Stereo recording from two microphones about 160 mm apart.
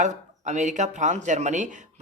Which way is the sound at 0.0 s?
50° right (ahead or behind).